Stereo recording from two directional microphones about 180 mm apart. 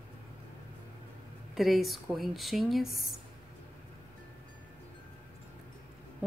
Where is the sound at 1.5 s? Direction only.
Centre (ahead or behind).